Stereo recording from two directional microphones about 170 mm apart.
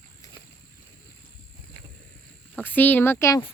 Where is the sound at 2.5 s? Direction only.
10° left (ahead or behind).